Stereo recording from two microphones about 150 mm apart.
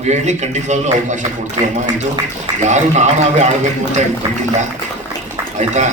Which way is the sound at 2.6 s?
50° right (ahead or behind).